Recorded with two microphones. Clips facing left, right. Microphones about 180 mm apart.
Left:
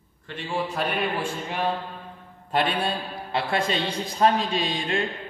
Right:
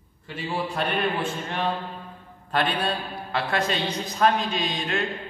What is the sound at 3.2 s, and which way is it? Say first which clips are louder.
A man's voice: even; 30° left (ahead or behind).